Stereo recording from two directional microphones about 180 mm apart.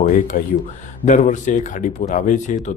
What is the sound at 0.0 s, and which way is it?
Speech, 45° left (ahead or behind).